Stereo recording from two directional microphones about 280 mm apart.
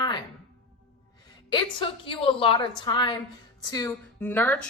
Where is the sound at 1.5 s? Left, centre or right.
Centre.